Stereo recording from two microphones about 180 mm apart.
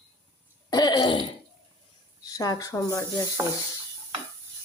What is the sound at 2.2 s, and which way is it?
Speech, 20° left (ahead or behind).